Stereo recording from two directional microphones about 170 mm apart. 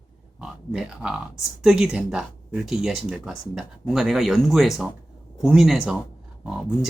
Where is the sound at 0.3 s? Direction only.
5° right (ahead or behind).